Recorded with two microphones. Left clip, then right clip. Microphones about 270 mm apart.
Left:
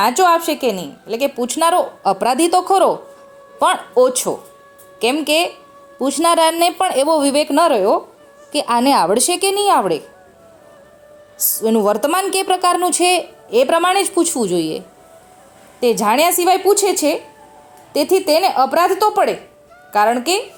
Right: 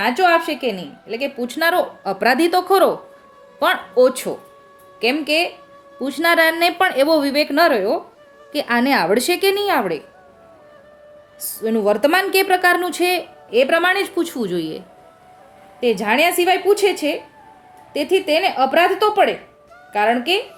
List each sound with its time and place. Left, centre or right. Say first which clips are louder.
0.0 s a woman's voice: left 2 dB; centre
11.6 s a woman's voice: left 1 dB; centre